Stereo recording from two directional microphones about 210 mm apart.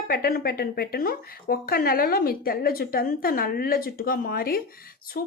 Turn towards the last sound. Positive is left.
turn(degrees=45)  # may be behind; listen again after turning